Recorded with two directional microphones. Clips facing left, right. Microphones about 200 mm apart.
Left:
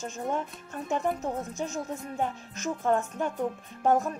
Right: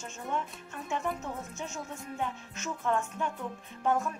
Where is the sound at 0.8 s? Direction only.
40° left (ahead or behind).